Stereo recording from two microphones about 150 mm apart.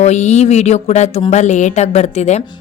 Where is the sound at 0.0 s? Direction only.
50° left (ahead or behind).